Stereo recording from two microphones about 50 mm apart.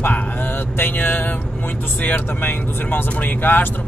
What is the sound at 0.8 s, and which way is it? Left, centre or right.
Mantra, left.